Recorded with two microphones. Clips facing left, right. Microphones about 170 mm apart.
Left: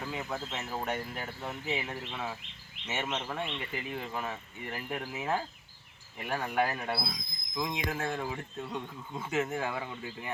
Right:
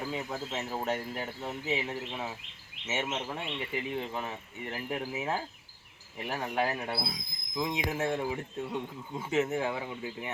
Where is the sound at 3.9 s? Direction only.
25° right (ahead or behind).